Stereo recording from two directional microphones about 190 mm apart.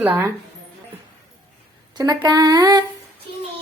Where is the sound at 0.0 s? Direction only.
5° right (ahead or behind).